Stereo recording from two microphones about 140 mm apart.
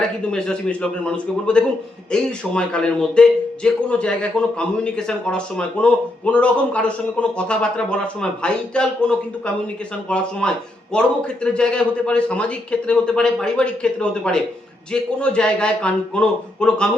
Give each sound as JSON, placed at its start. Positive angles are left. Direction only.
{"t": 0.0, "sound": "a man's voice", "side_deg": 5}